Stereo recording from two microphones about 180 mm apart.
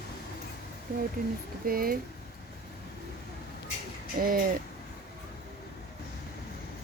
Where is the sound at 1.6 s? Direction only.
55° right (ahead or behind).